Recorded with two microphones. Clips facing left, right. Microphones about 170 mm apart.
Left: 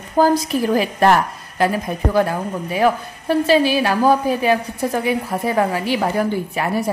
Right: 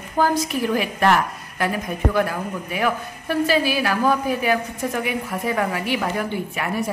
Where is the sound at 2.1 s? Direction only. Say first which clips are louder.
Left 4 dB; 30° left (ahead or behind).